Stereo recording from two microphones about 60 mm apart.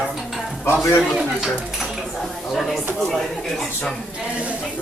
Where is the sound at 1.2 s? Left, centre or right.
Centre.